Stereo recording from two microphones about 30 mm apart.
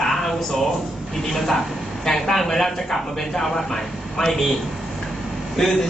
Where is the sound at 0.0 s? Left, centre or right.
Centre.